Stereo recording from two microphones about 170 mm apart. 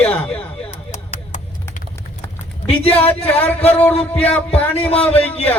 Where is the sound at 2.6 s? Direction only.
35° left (ahead or behind).